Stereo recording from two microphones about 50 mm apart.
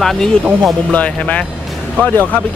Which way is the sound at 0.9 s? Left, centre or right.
Left.